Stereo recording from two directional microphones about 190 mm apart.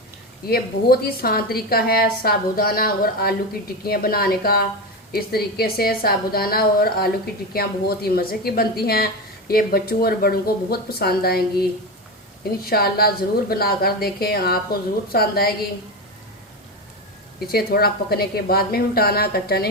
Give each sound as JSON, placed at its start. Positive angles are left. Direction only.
{"t": 0.4, "sound": "a woman's voice", "side_deg": 55}
{"t": 17.5, "sound": "a woman's voice", "side_deg": 55}